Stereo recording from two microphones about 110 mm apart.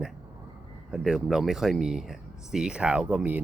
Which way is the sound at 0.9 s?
5° right (ahead or behind).